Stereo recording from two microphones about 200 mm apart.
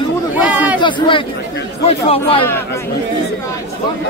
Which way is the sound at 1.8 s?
30° left (ahead or behind).